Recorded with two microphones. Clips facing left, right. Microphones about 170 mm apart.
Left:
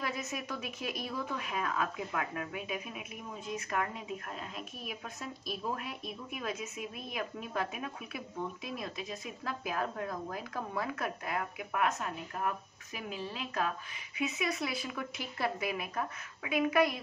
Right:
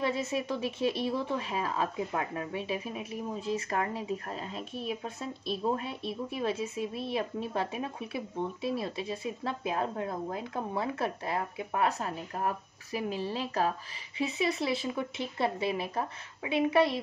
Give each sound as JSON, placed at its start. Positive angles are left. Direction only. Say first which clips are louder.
{"t": 0.0, "sound": "speech", "louder": "right 7 dB", "side_deg": -30}